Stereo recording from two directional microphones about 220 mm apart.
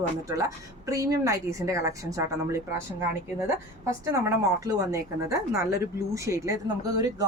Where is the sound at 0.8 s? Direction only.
15° right (ahead or behind).